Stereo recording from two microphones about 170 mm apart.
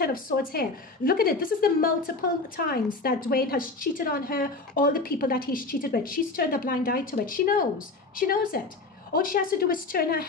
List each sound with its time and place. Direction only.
0.0 s a woman's voice: 60° left (ahead or behind)